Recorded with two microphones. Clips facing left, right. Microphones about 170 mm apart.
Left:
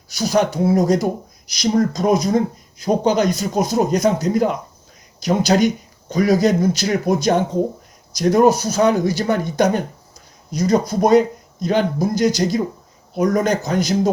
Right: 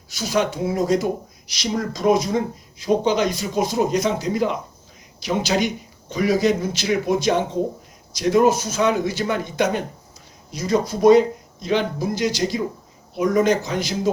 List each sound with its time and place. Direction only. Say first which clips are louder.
0.2 s speech: left 4 dB; 40° left (ahead or behind)